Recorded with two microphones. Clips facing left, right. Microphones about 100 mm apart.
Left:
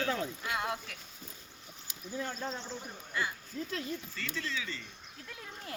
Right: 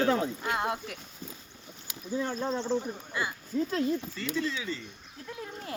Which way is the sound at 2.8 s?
15° right (ahead or behind).